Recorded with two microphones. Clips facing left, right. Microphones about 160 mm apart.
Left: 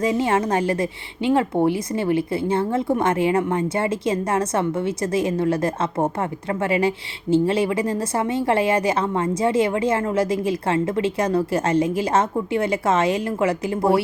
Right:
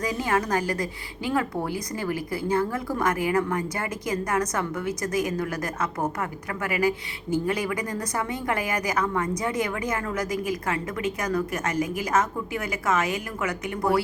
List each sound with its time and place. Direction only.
0.0 s a woman's voice: 25° left (ahead or behind)